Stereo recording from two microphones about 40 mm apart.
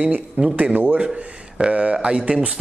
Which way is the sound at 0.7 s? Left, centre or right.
Right.